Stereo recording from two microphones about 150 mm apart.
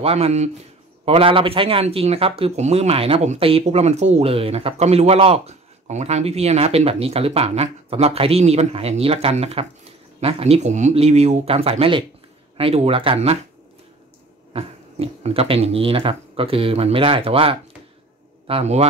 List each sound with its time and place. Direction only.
0.0 s speech: 40° right (ahead or behind)
14.5 s speech: 40° right (ahead or behind)